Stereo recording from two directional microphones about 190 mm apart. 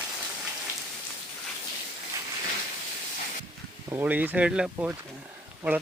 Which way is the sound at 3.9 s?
10° right (ahead or behind).